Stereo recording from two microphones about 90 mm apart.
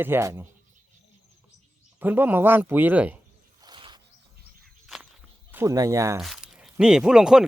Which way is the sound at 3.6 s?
60° right (ahead or behind).